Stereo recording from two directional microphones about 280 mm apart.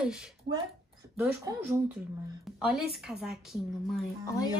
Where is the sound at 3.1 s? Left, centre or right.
Centre.